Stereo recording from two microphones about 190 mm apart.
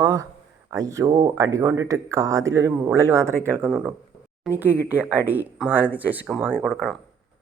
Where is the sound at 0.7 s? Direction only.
15° right (ahead or behind).